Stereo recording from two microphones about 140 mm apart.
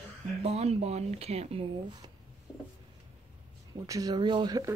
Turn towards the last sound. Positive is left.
turn(degrees=-25)  # may be behind; listen again after turning